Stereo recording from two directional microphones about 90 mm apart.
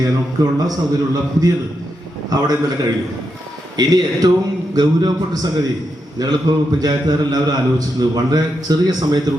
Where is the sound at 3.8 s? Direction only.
45° right (ahead or behind).